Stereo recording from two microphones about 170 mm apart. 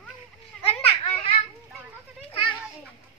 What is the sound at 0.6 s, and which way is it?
Children playing, 35° left (ahead or behind).